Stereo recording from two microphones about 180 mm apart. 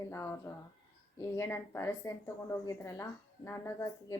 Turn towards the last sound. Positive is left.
turn(degrees=15)  # may be behind; listen again after turning